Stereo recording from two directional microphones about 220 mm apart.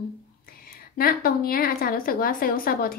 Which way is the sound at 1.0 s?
40° left (ahead or behind).